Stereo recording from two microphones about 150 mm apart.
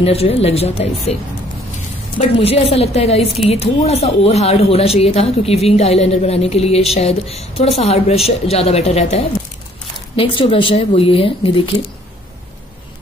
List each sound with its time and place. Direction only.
0.0 s a woman's voice: 40° left (ahead or behind)
2.1 s a woman's voice: 45° left (ahead or behind)